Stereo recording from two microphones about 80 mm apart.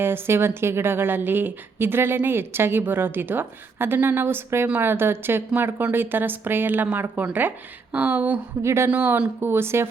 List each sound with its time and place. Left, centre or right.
0.0 s speech: right
8.6 s a woman's voice: right
8.9 s speech: centre
9.5 s a woman's voice: right